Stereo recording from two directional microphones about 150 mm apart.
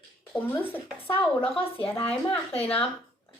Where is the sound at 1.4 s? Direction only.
40° left (ahead or behind).